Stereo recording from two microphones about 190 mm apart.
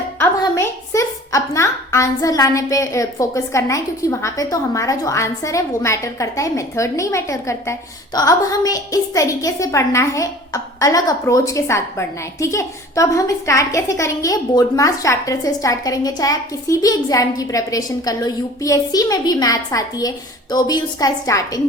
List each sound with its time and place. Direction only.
0.2 s a woman's voice: 15° left (ahead or behind)